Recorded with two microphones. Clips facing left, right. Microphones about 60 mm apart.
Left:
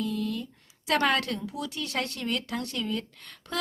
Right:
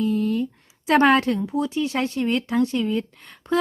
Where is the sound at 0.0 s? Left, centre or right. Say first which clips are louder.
Right 9 dB; right.